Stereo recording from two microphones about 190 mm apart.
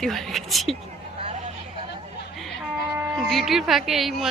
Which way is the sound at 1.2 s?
35° right (ahead or behind).